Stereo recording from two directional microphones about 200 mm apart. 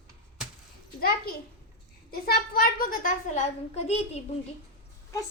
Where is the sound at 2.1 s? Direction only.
50° left (ahead or behind); by 4.2 s 30° left (ahead or behind).